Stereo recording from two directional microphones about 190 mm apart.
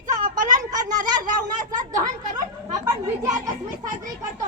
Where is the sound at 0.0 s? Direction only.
40° right (ahead or behind).